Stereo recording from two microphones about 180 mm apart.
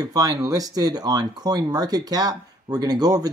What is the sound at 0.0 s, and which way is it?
Speech, 20° right (ahead or behind).